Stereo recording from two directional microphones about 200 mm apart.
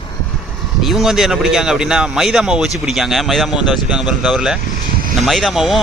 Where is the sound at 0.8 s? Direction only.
Centre (ahead or behind).